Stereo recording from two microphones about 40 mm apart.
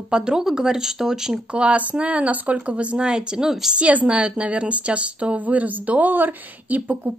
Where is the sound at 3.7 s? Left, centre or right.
Right.